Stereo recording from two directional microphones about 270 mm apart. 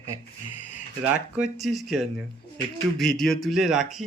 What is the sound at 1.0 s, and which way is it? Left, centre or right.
A child's voice, centre.